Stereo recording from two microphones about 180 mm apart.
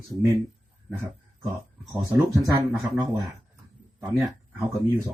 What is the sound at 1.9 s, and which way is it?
Speech, 15° right (ahead or behind).